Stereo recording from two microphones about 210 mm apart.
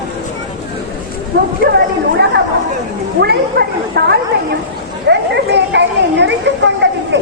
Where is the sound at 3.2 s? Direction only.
50° right (ahead or behind).